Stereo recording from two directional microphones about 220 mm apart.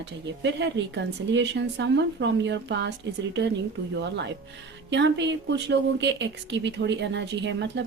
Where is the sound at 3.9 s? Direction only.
50° right (ahead or behind).